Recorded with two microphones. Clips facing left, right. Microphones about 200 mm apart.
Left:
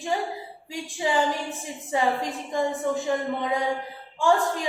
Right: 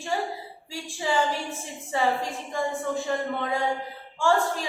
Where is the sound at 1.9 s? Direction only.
20° left (ahead or behind).